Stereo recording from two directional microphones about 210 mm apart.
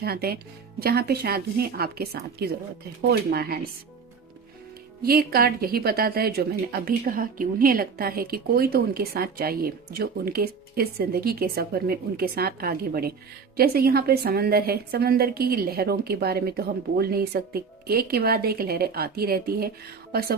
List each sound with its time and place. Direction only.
0.0 s a woman's voice: 45° right (ahead or behind)
5.0 s a woman's voice: 45° right (ahead or behind)